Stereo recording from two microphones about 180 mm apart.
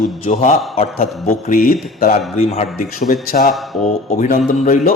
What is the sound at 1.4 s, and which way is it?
Speech, 50° left (ahead or behind).